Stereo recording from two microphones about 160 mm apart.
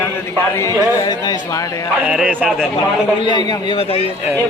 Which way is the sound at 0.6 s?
20° left (ahead or behind).